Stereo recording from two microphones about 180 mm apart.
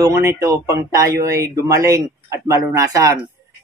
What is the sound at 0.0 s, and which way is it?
Speech, 15° right (ahead or behind).